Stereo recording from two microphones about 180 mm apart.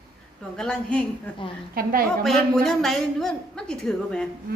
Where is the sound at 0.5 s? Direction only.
5° left (ahead or behind).